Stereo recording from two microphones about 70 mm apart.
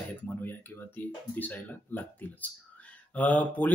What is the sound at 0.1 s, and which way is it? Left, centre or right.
Speech, left.